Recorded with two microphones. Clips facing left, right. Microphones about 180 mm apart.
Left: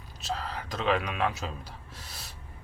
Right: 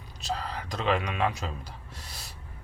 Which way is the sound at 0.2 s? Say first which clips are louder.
Right 1 dB; centre (ahead or behind).